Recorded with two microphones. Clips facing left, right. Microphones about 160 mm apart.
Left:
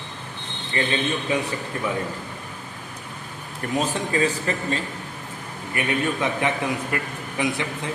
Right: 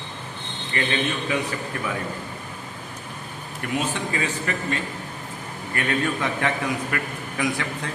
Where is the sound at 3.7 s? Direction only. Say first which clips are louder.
Left 3 dB; 35° left (ahead or behind).